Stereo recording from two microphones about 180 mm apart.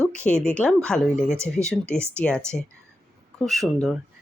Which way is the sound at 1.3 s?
15° right (ahead or behind).